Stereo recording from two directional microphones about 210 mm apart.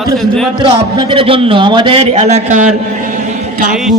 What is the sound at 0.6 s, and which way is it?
A man's voice, 25° right (ahead or behind).